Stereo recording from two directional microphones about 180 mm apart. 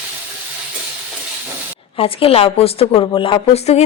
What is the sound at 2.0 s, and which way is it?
Speech, 30° left (ahead or behind).